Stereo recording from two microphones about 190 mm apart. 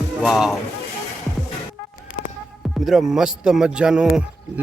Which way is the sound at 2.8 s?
Centre (ahead or behind).